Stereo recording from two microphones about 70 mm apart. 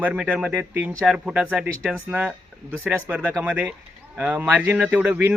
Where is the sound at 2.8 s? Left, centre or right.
Centre.